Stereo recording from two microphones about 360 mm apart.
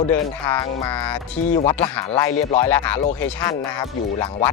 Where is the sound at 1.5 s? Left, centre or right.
Centre.